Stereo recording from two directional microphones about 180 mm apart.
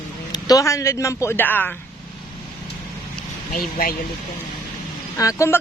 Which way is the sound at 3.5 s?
50° left (ahead or behind).